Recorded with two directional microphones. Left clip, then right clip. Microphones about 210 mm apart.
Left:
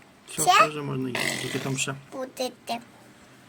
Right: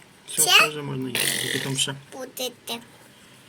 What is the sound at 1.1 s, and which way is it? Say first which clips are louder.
A man's voice: right 5 dB; 50° left (ahead or behind).